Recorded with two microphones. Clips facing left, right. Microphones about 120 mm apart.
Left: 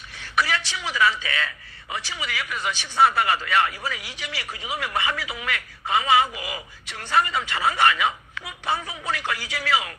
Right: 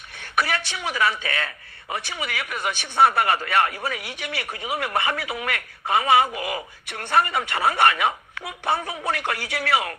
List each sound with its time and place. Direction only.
0.2 s a woman's voice: 55° right (ahead or behind)